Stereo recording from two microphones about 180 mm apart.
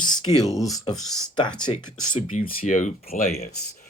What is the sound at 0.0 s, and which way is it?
Speech, 20° left (ahead or behind).